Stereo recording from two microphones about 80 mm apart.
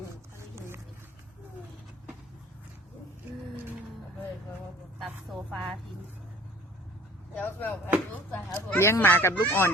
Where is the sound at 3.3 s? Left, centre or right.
Right.